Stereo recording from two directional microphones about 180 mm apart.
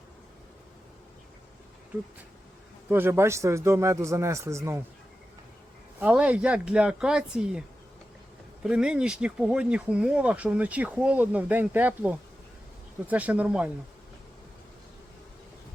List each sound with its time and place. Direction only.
2.9 s speech: 15° right (ahead or behind)
6.0 s speech: 5° right (ahead or behind)
8.6 s speech: 5° right (ahead or behind)